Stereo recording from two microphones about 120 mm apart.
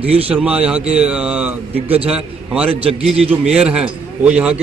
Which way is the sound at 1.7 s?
55° right (ahead or behind).